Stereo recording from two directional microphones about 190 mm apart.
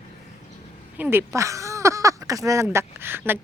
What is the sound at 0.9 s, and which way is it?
Speech, 10° right (ahead or behind).